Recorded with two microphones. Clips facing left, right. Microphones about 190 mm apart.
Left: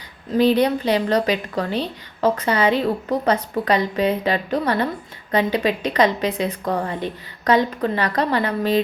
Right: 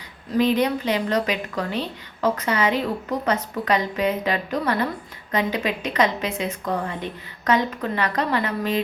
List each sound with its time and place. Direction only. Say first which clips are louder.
0.3 s a woman's voice: left 3 dB; 35° left (ahead or behind)